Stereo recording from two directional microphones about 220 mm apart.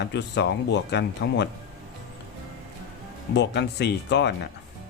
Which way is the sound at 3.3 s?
50° left (ahead or behind).